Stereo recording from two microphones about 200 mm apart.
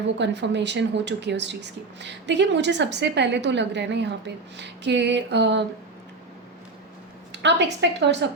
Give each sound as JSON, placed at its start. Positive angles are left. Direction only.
{"t": 0.2, "sound": "speech", "side_deg": -60}
{"t": 7.3, "sound": "speech", "side_deg": -60}